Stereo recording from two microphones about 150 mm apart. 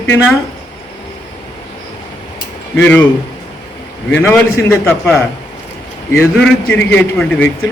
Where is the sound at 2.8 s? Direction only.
10° left (ahead or behind).